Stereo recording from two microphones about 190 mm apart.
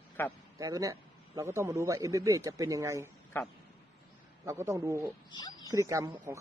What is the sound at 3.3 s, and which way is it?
Speech, 10° left (ahead or behind).